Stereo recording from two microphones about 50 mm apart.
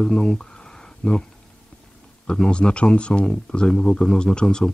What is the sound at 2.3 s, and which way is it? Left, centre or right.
Speech, centre.